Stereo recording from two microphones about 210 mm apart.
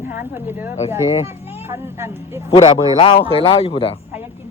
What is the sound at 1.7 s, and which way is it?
Speech, 10° right (ahead or behind).